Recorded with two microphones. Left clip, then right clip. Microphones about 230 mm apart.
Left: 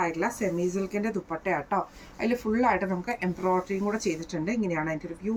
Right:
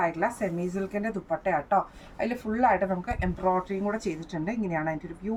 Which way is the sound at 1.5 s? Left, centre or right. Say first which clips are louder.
Right 3 dB; centre.